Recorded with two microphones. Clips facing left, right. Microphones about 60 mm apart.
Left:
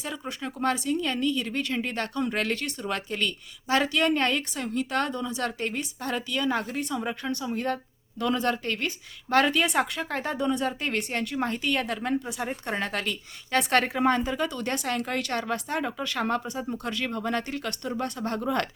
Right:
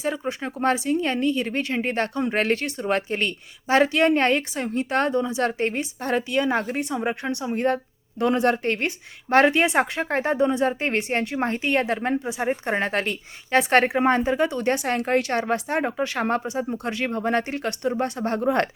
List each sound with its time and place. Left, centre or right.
0.0 s a woman's voice: right